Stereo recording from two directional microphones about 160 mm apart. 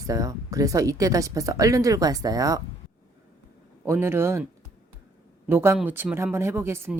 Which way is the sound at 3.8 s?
15° right (ahead or behind).